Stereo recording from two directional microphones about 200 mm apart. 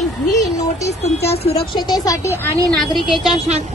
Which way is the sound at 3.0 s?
Centre (ahead or behind).